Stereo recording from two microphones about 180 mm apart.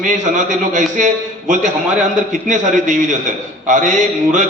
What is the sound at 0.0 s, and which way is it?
A man's voice, 45° right (ahead or behind).